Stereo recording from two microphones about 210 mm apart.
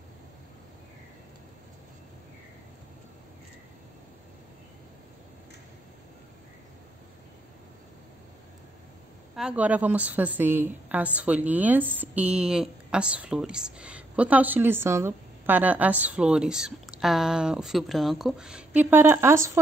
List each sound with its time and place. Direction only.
9.3 s a woman's voice: 5° right (ahead or behind)